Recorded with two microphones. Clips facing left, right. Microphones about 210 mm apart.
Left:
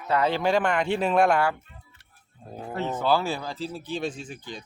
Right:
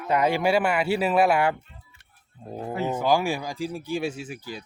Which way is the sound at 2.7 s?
10° right (ahead or behind).